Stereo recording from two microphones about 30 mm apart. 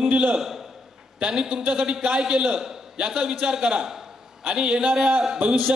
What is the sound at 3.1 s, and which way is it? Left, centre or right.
A man's voice, right.